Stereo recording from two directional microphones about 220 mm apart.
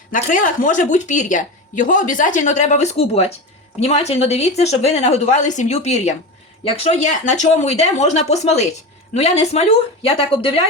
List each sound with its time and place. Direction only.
0.1 s speech: 35° left (ahead or behind)